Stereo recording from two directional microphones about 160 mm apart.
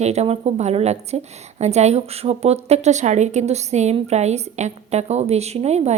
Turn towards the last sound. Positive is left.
turn(degrees=-45)  # may be behind; listen again after turning